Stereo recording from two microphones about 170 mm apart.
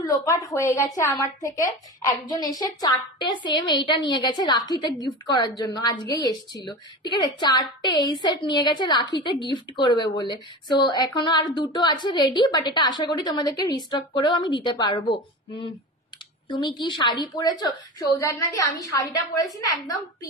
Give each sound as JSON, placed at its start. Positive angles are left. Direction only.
{"t": 0.0, "sound": "a woman's voice", "side_deg": 20}
{"t": 16.4, "sound": "a woman's voice", "side_deg": 25}